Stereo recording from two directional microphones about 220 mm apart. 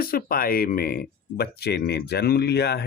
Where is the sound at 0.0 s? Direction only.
40° left (ahead or behind).